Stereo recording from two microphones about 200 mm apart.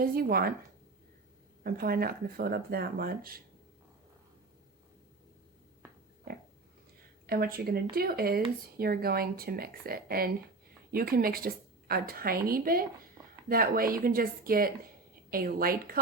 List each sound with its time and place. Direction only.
0.0 s a woman's voice: 50° right (ahead or behind)
1.6 s a woman's voice: 45° right (ahead or behind)
7.3 s a woman's voice: 50° right (ahead or behind)